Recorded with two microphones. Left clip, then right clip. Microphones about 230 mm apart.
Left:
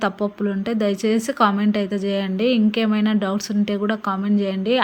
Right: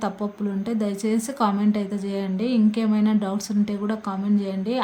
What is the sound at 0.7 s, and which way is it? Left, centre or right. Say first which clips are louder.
Speech: left 5 dB; centre.